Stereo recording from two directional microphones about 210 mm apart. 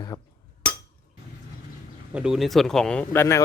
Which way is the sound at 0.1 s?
20° left (ahead or behind).